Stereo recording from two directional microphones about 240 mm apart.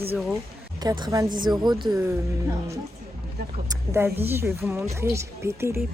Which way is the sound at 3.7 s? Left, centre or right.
Centre.